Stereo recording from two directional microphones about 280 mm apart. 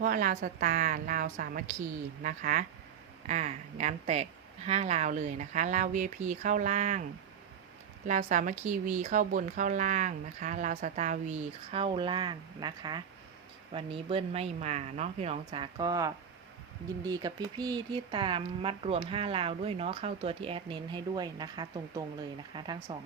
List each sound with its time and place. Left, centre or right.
0.0 s speech: right
8.0 s speech: right